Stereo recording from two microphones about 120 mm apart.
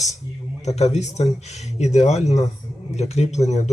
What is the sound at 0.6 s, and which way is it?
Speech, 65° left (ahead or behind).